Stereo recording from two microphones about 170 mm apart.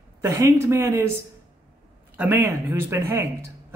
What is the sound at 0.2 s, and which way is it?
Speech, 15° right (ahead or behind).